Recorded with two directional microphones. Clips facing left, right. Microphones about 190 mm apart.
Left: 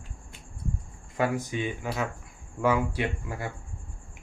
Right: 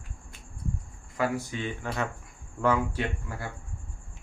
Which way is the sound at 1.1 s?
20° left (ahead or behind).